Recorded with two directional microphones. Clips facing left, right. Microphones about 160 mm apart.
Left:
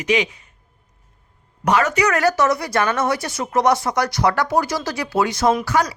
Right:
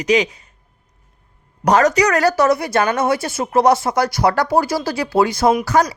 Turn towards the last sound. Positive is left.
turn(degrees=-40)  # may be behind; listen again after turning